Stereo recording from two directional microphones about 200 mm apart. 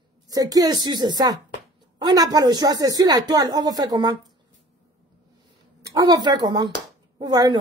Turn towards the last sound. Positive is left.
turn(degrees=-20)  # may be behind; listen again after turning